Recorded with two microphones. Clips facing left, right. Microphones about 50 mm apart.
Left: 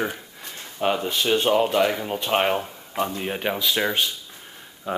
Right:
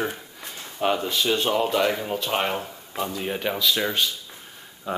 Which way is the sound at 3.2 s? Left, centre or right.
Centre.